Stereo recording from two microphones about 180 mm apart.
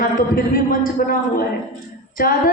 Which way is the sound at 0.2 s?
50° left (ahead or behind).